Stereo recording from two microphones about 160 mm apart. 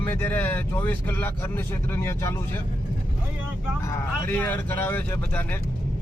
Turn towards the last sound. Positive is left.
turn(degrees=10)  # may be behind; listen again after turning